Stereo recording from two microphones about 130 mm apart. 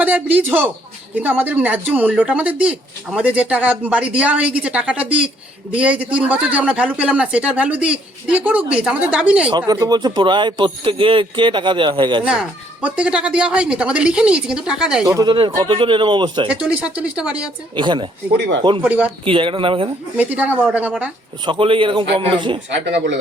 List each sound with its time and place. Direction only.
0.0 s speech: 10° right (ahead or behind)
9.5 s speech: 35° right (ahead or behind)
12.2 s speech: 10° right (ahead or behind)
15.0 s speech: 30° right (ahead or behind)
16.5 s speech: 10° right (ahead or behind)
17.7 s speech: 35° right (ahead or behind)
18.8 s speech: 10° right (ahead or behind)
19.2 s speech: 40° right (ahead or behind)
20.1 s speech: 10° right (ahead or behind)
21.4 s speech: 40° right (ahead or behind)